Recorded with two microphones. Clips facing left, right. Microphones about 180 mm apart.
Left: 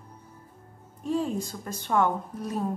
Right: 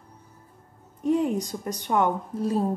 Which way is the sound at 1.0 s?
20° right (ahead or behind).